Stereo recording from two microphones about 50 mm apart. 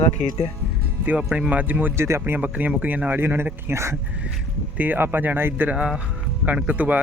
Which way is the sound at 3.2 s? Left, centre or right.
Right.